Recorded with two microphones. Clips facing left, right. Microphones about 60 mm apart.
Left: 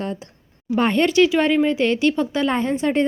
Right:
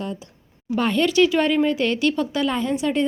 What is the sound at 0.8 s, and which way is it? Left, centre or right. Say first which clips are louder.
Speech: left 2 dB; left.